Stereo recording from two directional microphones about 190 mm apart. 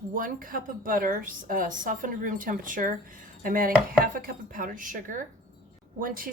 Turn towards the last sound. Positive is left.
turn(degrees=-45)  # may be behind; listen again after turning